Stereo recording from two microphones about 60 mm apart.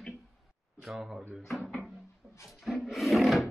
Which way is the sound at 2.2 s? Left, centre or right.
Centre.